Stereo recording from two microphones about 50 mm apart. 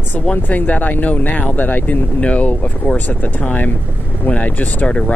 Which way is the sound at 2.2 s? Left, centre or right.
Left.